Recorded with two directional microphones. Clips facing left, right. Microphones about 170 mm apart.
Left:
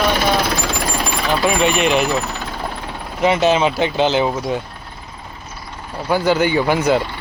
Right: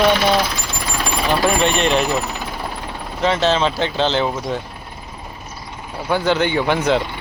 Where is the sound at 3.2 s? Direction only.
10° left (ahead or behind).